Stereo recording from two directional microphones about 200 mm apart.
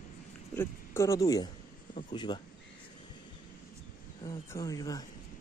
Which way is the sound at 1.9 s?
35° left (ahead or behind).